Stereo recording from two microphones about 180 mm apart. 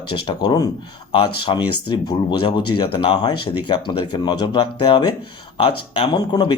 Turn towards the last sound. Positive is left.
turn(degrees=25)  # may be behind; listen again after turning